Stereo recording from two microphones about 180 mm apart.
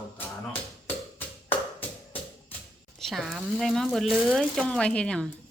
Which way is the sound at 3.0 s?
Centre (ahead or behind).